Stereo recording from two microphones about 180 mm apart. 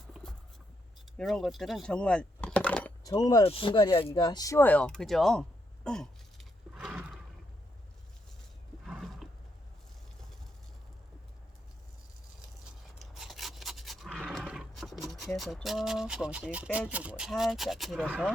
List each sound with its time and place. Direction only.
0.1 s a sound: centre (ahead or behind)
1.1 s speech: centre (ahead or behind)
3.0 s speech: 20° left (ahead or behind)
3.4 s speech: 30° left (ahead or behind); by 7.2 s 5° right (ahead or behind)
8.9 s roaring cats: centre (ahead or behind)
13.0 s a sound: centre (ahead or behind)
16.9 s speech: 5° right (ahead or behind)